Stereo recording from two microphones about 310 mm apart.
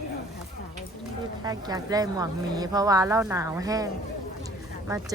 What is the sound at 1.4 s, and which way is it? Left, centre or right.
Speech, centre.